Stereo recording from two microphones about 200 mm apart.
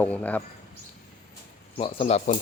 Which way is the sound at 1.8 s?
30° left (ahead or behind).